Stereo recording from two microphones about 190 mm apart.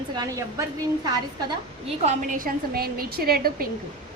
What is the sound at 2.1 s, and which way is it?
A woman's voice, 45° right (ahead or behind).